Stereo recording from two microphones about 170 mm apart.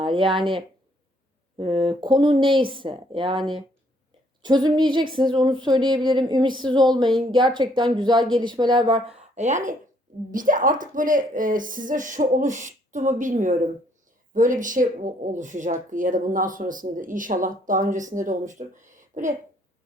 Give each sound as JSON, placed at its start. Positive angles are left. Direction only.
{"t": 0.0, "sound": "speech", "side_deg": -30}
{"t": 1.5, "sound": "speech", "side_deg": -30}
{"t": 4.4, "sound": "speech", "side_deg": -25}